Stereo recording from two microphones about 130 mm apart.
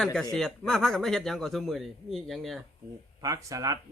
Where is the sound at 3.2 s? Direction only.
25° right (ahead or behind).